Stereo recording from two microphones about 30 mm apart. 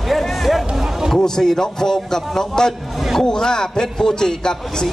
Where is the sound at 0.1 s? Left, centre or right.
Centre.